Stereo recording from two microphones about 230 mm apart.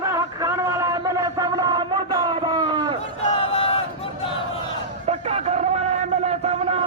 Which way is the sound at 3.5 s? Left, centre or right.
Left.